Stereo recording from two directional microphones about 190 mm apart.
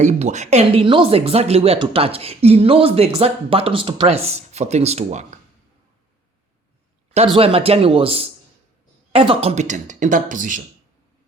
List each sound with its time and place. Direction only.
0.0 s speech: 35° right (ahead or behind)
7.3 s speech: 30° right (ahead or behind)